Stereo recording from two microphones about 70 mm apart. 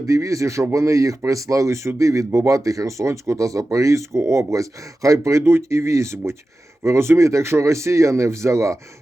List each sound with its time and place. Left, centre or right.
0.0 s speech: right